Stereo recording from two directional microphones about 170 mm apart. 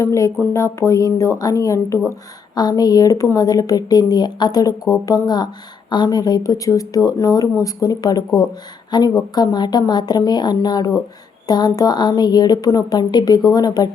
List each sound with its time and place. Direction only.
0.0 s speech: 15° left (ahead or behind)